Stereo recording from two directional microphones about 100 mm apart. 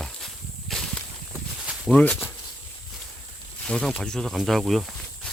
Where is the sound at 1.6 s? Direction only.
5° right (ahead or behind).